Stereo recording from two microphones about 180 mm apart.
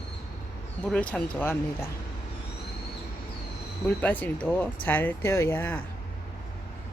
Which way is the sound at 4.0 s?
10° left (ahead or behind).